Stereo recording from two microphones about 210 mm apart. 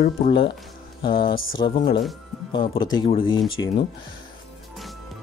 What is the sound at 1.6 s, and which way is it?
Speech, 25° left (ahead or behind).